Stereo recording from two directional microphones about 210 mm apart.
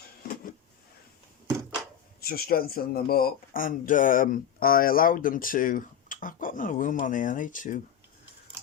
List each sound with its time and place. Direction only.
2.2 s speech: 45° left (ahead or behind)